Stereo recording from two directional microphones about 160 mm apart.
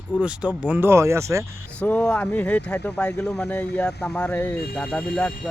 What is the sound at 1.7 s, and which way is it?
Speech, 10° left (ahead or behind).